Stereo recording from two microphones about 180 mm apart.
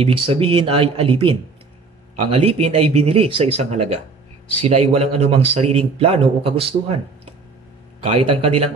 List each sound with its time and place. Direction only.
0.0 s speech: 30° right (ahead or behind)